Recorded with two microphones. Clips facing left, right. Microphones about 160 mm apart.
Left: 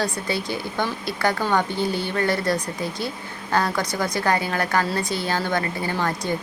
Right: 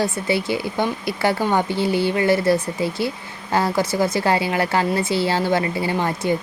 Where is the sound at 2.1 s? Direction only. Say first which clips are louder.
Right 5 dB; 25° right (ahead or behind).